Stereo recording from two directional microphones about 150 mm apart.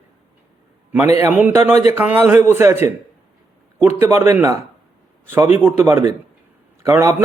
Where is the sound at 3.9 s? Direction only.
15° right (ahead or behind).